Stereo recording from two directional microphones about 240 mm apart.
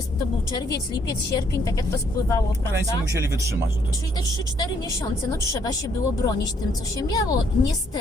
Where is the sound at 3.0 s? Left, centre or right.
Centre.